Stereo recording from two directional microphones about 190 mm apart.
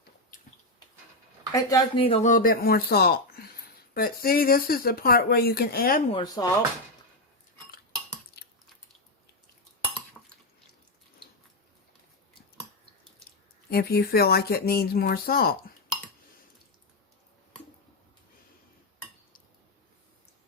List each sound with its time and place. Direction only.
1.5 s speech: 20° left (ahead or behind)
2.0 s speech: 30° left (ahead or behind); by 6.0 s 55° left (ahead or behind)
6.1 s speech: 25° left (ahead or behind)
10.2 s dishes: centre (ahead or behind)
13.7 s speech: 55° left (ahead or behind)